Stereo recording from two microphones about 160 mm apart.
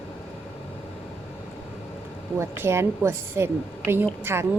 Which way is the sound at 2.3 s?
15° right (ahead or behind).